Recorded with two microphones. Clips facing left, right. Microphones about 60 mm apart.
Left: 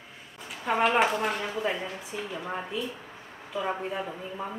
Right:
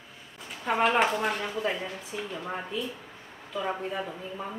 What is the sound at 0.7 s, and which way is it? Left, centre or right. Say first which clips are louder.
A woman's voice: even; centre.